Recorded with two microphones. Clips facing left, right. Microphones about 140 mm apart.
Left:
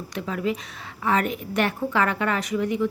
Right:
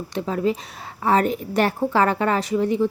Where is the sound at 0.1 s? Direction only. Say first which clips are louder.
Right 4 dB; 30° right (ahead or behind).